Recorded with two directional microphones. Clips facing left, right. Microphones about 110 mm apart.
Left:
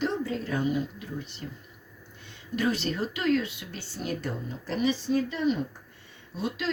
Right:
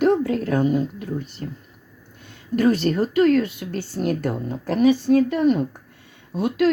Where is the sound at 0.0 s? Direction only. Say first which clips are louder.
Right 10 dB; 60° right (ahead or behind).